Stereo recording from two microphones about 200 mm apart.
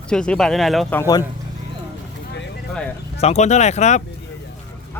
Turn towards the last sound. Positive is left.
turn(degrees=35)  # may be behind; listen again after turning